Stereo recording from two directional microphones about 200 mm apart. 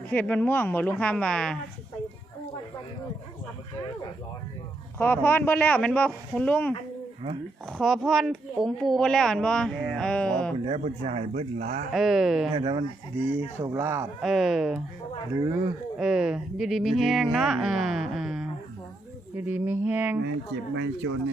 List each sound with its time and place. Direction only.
0.1 s a woman's voice: 5° left (ahead or behind)
4.9 s a woman's voice: 10° left (ahead or behind)
10.7 s speech: 30° right (ahead or behind)
11.9 s speech: centre (ahead or behind)
12.5 s speech: 20° right (ahead or behind)
14.2 s speech: centre (ahead or behind)
15.3 s speech: 15° right (ahead or behind)
16.0 s speech: 5° right (ahead or behind)
19.5 s speech: 10° right (ahead or behind)
20.7 s speech: 70° right (ahead or behind)